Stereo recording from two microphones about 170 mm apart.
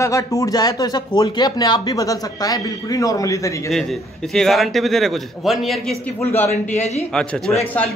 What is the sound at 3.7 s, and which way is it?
A man's voice, centre (ahead or behind).